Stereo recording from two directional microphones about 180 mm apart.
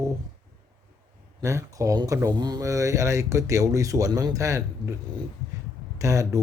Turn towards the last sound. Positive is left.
turn(degrees=-15)  # may be behind; listen again after turning